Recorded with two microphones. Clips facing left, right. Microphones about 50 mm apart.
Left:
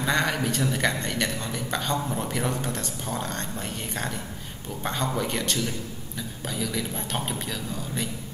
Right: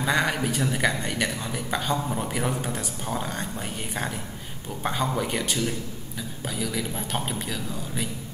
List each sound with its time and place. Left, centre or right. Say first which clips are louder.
0.0 s a man's voice: right 1 dB; centre
4.8 s a man's voice: right 1 dB; centre